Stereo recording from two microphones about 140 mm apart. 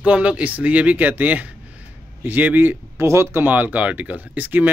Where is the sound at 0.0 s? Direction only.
10° right (ahead or behind).